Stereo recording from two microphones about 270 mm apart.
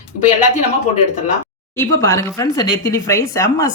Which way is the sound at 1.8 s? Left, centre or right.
Centre.